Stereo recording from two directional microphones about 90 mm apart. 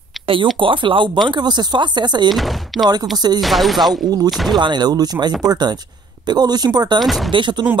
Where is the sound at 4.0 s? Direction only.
50° right (ahead or behind).